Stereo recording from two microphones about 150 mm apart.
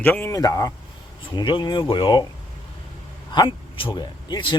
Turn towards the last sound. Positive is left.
turn(degrees=30)  # may be behind; listen again after turning